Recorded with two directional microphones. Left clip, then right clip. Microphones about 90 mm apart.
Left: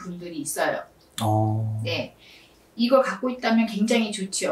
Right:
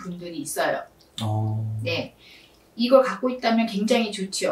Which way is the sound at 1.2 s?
30° left (ahead or behind).